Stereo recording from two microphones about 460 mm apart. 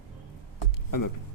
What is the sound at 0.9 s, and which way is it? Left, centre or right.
Speech, left.